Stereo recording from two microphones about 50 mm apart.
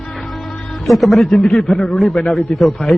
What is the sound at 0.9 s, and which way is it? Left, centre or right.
A man's voice, centre.